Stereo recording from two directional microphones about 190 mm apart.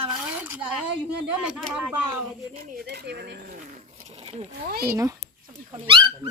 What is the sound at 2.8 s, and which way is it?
Speech, 60° right (ahead or behind).